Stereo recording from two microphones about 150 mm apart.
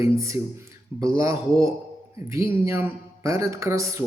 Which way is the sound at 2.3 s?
20° right (ahead or behind).